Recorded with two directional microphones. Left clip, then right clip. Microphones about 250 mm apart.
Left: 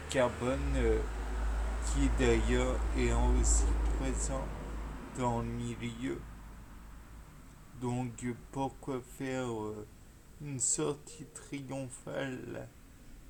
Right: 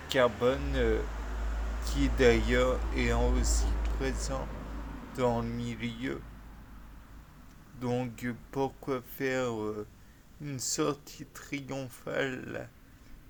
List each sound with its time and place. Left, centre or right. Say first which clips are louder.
0.1 s speech: right 5 dB; right
7.8 s speech: right 5 dB; right